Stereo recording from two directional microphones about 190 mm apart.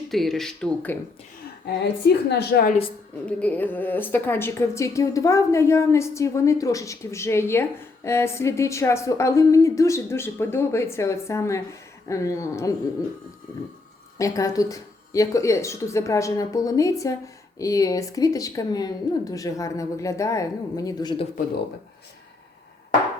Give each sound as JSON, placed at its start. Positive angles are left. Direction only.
{"t": 0.1, "sound": "speech", "side_deg": 0}
{"t": 1.6, "sound": "a woman's voice", "side_deg": 60}
{"t": 3.2, "sound": "a woman's voice", "side_deg": 5}
{"t": 14.2, "sound": "a woman's voice", "side_deg": 15}